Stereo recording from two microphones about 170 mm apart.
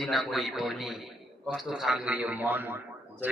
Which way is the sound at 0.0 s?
Centre (ahead or behind).